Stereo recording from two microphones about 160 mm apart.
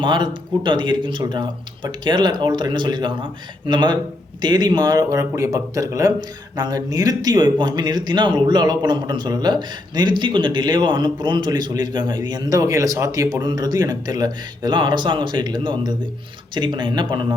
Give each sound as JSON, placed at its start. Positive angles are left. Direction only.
{"t": 0.0, "sound": "speech", "side_deg": -30}